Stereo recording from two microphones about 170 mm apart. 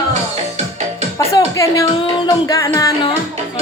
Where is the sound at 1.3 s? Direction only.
20° left (ahead or behind).